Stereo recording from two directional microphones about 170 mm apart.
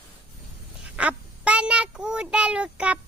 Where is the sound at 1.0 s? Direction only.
5° right (ahead or behind).